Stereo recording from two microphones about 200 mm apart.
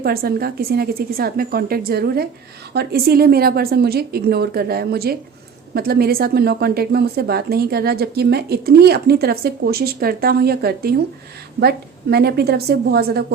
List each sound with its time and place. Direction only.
0.0 s a woman's voice: 50° right (ahead or behind)
12.1 s a woman's voice: 55° right (ahead or behind)